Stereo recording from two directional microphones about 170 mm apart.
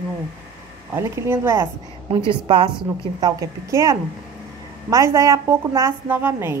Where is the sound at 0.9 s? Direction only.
15° right (ahead or behind).